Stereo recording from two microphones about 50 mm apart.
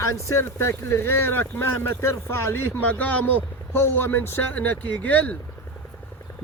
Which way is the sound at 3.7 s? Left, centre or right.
Left.